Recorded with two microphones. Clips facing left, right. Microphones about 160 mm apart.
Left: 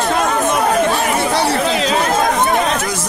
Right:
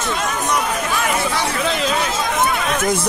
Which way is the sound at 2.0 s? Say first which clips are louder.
Left 4 dB; 50° left (ahead or behind).